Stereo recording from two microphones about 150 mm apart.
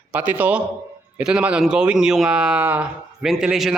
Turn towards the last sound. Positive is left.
turn(degrees=-5)  # may be behind; listen again after turning